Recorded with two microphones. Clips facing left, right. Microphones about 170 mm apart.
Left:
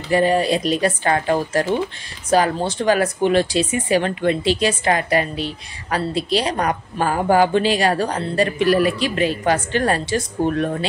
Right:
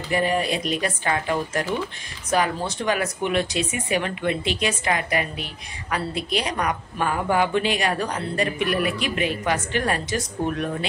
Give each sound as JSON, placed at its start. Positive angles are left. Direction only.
{"t": 0.1, "sound": "speech", "side_deg": 30}